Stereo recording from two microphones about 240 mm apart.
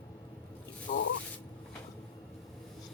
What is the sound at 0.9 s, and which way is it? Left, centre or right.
Speech, left.